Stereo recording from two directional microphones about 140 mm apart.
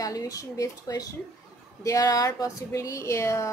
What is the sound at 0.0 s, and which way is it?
Speech, 25° left (ahead or behind).